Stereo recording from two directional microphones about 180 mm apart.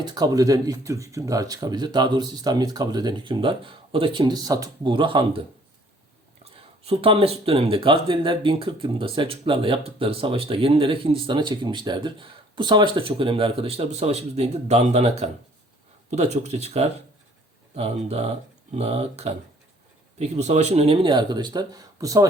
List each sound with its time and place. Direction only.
0.0 s speech: 20° right (ahead or behind)
6.8 s speech: 30° right (ahead or behind)